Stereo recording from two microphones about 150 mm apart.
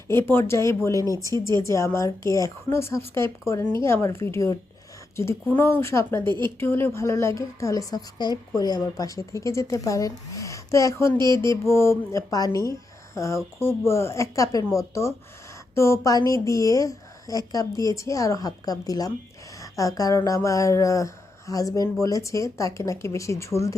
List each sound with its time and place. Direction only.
0.1 s speech: 15° left (ahead or behind)
1.0 s speech: 25° right (ahead or behind)
1.5 s a woman's voice: 20° left (ahead or behind)
6.2 s speech: 30° right (ahead or behind)
6.6 s a woman's voice: 15° left (ahead or behind)